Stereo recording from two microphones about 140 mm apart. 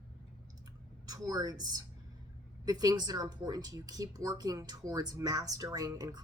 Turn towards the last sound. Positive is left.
turn(degrees=-25)  # may be behind; listen again after turning